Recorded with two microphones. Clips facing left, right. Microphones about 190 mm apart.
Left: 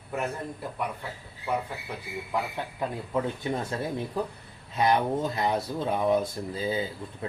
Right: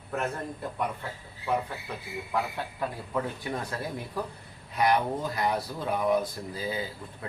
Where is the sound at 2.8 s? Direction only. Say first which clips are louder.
Left 3 dB; 20° left (ahead or behind).